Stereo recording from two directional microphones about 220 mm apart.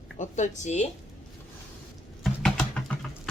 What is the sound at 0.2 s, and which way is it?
Speech, 35° left (ahead or behind).